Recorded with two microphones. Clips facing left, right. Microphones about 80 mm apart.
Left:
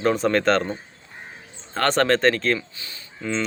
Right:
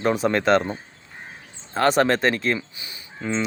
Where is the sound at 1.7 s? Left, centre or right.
Centre.